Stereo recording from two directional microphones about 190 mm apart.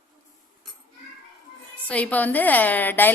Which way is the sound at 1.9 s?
10° left (ahead or behind).